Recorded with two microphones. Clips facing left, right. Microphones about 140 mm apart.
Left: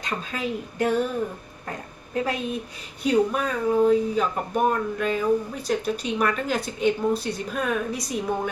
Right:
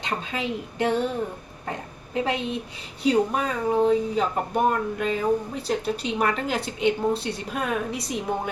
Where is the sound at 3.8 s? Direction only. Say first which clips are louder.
Left 1 dB; 25° right (ahead or behind).